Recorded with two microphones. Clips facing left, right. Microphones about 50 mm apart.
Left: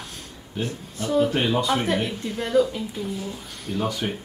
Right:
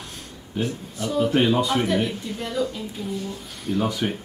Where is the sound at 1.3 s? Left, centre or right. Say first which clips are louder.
Right 3 dB; centre.